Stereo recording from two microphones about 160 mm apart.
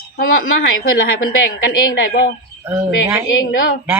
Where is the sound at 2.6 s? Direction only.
15° right (ahead or behind).